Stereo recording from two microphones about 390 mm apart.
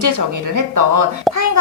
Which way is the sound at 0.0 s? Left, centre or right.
Right.